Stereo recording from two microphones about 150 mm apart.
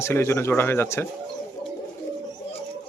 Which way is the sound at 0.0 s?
15° left (ahead or behind).